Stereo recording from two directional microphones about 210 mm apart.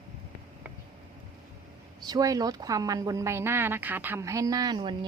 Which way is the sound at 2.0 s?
20° right (ahead or behind).